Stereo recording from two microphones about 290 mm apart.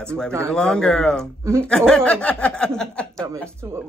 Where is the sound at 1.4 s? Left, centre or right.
Centre.